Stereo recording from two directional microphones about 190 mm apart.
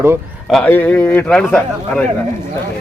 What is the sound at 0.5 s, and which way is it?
A man's voice, 10° left (ahead or behind).